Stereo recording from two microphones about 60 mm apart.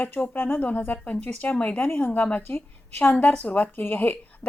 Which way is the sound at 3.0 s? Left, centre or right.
Left.